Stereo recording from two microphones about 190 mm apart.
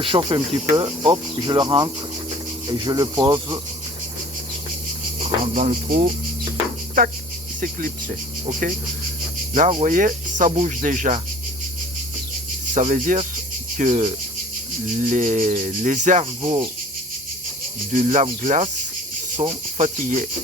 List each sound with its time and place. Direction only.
0.0 s speech: 25° right (ahead or behind)
5.5 s speech: 45° right (ahead or behind)
12.7 s speech: 40° right (ahead or behind)
14.9 s cricket: 40° right (ahead or behind)
16.4 s speech: 30° right (ahead or behind)
17.9 s cricket: 40° right (ahead or behind)